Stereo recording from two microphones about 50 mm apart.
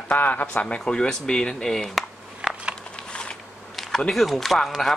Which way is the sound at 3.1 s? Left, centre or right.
Centre.